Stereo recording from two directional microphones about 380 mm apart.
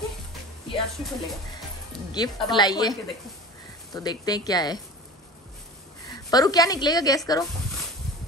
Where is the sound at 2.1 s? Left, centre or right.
Centre.